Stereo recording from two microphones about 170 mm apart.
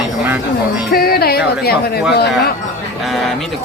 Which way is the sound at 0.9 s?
65° left (ahead or behind).